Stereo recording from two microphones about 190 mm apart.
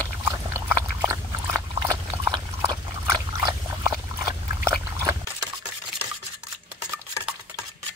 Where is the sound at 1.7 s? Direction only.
25° right (ahead or behind).